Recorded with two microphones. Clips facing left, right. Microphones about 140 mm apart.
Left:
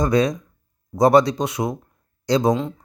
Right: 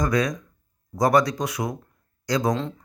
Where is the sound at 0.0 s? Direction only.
25° left (ahead or behind).